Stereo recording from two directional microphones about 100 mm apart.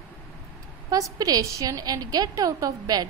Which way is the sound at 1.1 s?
40° right (ahead or behind).